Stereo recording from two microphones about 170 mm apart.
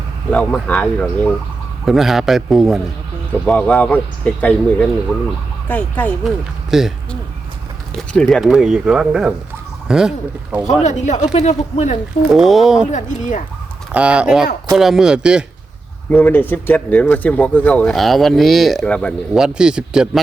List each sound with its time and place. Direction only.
0.3 s speech: 5° left (ahead or behind)
6.2 s speech: centre (ahead or behind)
10.8 s speech: 45° left (ahead or behind)
12.3 s speech: centre (ahead or behind)
12.9 s speech: 45° left (ahead or behind)
13.9 s speech: 5° right (ahead or behind)
16.0 s speech: 10° left (ahead or behind)